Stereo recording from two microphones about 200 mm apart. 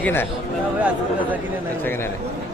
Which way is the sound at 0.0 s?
10° left (ahead or behind).